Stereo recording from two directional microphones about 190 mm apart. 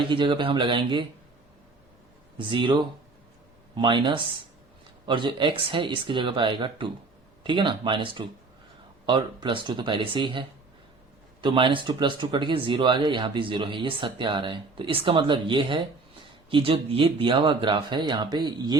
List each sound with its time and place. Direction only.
0.0 s speech: 25° right (ahead or behind)
2.4 s speech: 25° right (ahead or behind)